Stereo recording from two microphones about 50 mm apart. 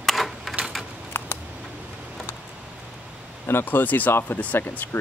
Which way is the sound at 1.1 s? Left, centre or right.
Left.